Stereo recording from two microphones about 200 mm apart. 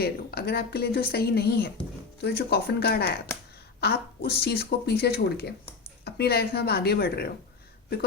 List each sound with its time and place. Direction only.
0.0 s speech: 50° left (ahead or behind)